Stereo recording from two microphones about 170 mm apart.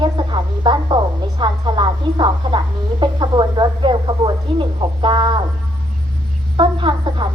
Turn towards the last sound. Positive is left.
turn(degrees=-30)  # may be behind; listen again after turning